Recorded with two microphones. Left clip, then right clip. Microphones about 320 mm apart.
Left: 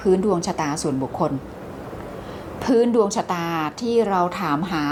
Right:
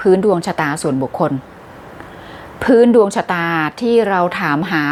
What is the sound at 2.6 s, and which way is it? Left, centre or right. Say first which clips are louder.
A woman's voice: right 8 dB; right.